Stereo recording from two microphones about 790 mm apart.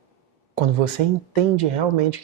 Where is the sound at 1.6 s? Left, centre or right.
Right.